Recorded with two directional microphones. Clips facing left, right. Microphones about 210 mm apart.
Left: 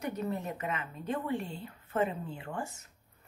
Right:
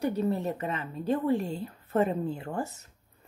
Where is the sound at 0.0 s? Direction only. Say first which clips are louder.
Right 7 dB; 30° right (ahead or behind).